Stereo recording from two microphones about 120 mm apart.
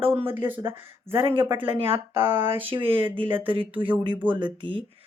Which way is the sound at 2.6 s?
50° right (ahead or behind).